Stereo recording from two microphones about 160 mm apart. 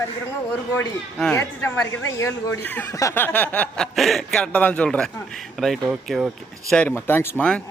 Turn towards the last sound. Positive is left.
turn(degrees=10)  # may be behind; listen again after turning